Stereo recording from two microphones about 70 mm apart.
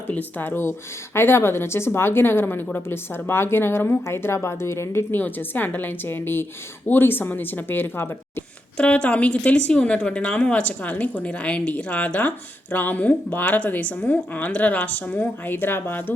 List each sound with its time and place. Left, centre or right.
0.1 s a woman's voice: left
5.1 s a woman's voice: left
8.8 s a woman's voice: centre